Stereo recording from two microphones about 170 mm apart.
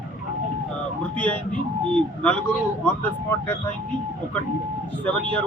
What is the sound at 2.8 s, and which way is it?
Speech, 10° left (ahead or behind).